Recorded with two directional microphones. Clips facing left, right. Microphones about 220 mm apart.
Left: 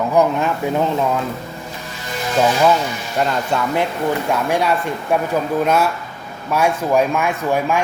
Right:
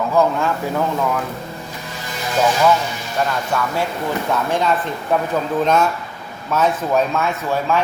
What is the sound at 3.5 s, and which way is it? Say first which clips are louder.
Speech: even; 25° left (ahead or behind).